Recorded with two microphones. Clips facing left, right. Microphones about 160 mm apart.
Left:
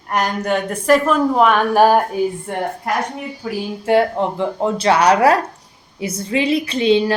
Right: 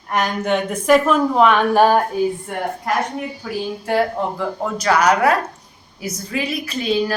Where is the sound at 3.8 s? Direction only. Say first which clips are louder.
Left 5 dB; 25° left (ahead or behind).